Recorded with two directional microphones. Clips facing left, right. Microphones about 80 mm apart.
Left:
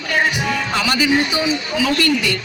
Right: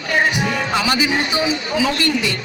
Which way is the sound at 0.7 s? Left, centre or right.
Right.